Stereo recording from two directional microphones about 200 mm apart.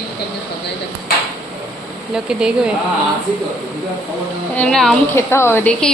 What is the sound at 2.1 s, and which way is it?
Speech, 5° right (ahead or behind).